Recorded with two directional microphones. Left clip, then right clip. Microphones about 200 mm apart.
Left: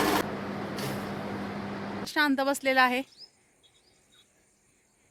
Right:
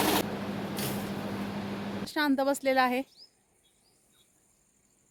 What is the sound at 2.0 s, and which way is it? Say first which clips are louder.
Speech: left 2 dB; centre (ahead or behind).